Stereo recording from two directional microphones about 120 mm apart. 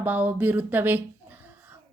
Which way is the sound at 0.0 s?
15° right (ahead or behind).